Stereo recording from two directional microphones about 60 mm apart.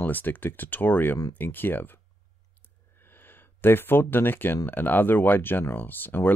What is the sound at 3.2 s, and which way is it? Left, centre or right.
Speech, left.